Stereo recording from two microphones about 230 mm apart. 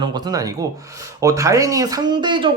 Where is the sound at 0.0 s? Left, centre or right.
Centre.